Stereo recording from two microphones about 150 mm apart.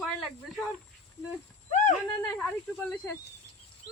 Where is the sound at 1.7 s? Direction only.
55° left (ahead or behind).